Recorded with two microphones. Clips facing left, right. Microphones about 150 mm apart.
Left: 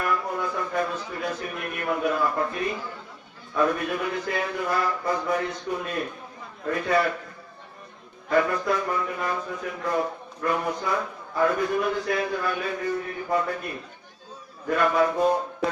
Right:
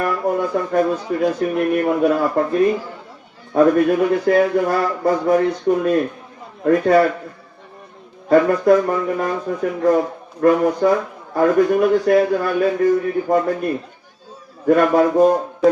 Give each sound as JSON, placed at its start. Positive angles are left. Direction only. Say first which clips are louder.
{"t": 0.0, "sound": "speech", "louder": "right 8 dB", "side_deg": -45}
{"t": 2.4, "sound": "speech", "louder": "right 8 dB", "side_deg": -60}
{"t": 3.5, "sound": "speech", "louder": "right 11 dB", "side_deg": -45}
{"t": 8.3, "sound": "speech", "louder": "right 10 dB", "side_deg": -45}
{"t": 14.7, "sound": "speech", "louder": "right 8 dB", "side_deg": -45}